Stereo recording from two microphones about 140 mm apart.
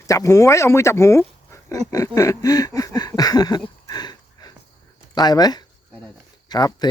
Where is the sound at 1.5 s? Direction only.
20° left (ahead or behind).